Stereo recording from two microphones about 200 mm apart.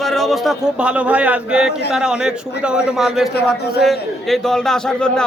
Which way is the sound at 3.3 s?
55° left (ahead or behind).